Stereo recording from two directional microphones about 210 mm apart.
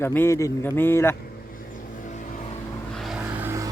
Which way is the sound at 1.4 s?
40° left (ahead or behind).